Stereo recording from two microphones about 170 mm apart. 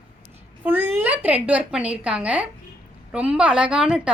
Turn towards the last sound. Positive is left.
turn(degrees=-5)  # may be behind; listen again after turning